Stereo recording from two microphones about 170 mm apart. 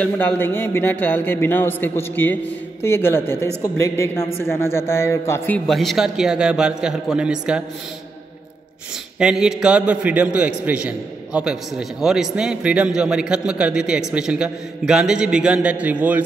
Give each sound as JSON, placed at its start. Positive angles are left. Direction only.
{"t": 0.0, "sound": "a man's voice", "side_deg": 10}
{"t": 5.7, "sound": "a man's voice", "side_deg": 0}
{"t": 9.2, "sound": "a man's voice", "side_deg": -5}